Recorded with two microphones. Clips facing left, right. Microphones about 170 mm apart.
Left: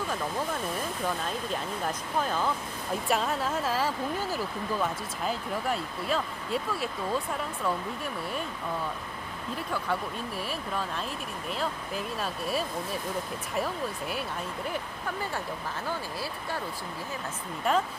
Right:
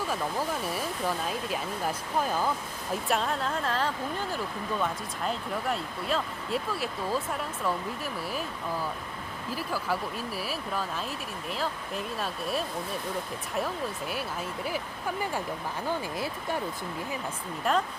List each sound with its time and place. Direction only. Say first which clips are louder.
0.6 s speech: even; 5° right (ahead or behind)
3.1 s speech: left 1 dB; centre (ahead or behind)
9.6 s speech: even; 5° right (ahead or behind)
16.1 s speech: right 3 dB; 20° right (ahead or behind)
17.7 s speech: even; centre (ahead or behind)